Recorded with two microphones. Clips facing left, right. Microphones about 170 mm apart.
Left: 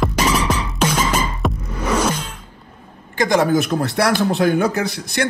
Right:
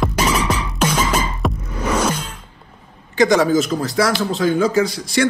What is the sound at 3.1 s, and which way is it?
Speech, 50° left (ahead or behind).